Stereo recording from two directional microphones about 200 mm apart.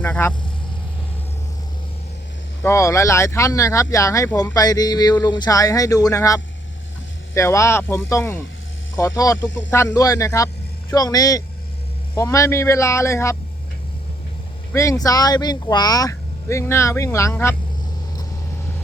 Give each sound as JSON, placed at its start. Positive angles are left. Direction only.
{"t": 0.0, "sound": "speech", "side_deg": 10}
{"t": 2.6, "sound": "speech", "side_deg": 15}
{"t": 14.7, "sound": "speech", "side_deg": 15}